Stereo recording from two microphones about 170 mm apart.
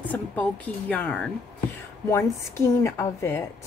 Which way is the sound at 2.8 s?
15° left (ahead or behind).